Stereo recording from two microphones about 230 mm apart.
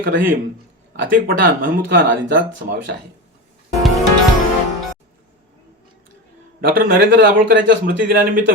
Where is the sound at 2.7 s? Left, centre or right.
Right.